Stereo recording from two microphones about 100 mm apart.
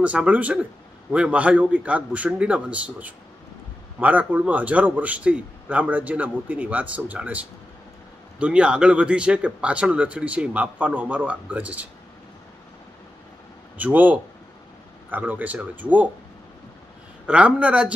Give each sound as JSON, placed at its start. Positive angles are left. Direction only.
{"t": 0.0, "sound": "speech", "side_deg": -15}
{"t": 8.4, "sound": "speech", "side_deg": -10}
{"t": 13.7, "sound": "speech", "side_deg": -15}
{"t": 17.3, "sound": "speech", "side_deg": -10}